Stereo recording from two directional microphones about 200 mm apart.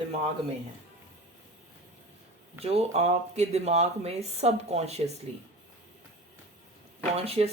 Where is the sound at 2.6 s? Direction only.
30° right (ahead or behind).